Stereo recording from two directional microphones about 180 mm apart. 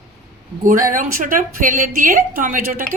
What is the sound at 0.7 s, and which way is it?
A woman's voice, 45° right (ahead or behind).